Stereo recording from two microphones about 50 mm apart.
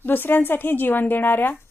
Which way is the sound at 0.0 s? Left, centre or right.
Left.